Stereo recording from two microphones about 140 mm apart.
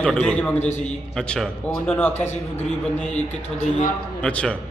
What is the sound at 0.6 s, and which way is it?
Speech, 55° left (ahead or behind).